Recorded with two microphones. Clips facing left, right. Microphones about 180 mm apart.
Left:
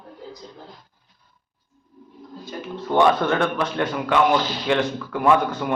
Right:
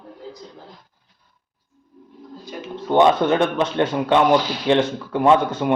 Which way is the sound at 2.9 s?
20° right (ahead or behind).